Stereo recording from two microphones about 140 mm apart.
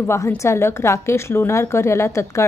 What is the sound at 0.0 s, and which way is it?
A woman's voice, 15° left (ahead or behind).